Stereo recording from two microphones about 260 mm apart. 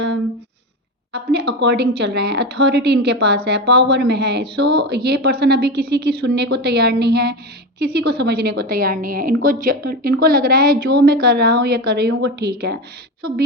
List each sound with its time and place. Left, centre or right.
1.1 s a woman's voice: right